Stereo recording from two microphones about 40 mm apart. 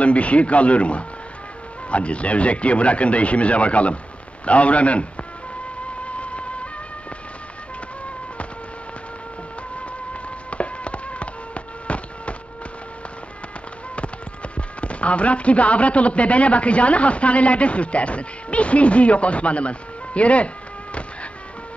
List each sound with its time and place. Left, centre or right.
0.0 s speech: left
6.0 s music: left
10.5 s a sound: left
14.8 s speech: left